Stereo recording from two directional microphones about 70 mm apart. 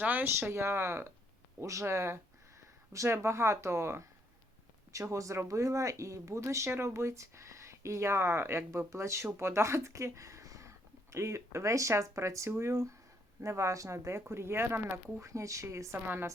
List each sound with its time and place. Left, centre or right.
0.0 s speech: right
0.3 s speech: right
4.9 s speech: right
16.0 s speech: right